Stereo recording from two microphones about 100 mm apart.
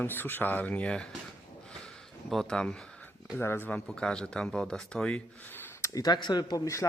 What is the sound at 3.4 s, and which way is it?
Speech, 20° left (ahead or behind).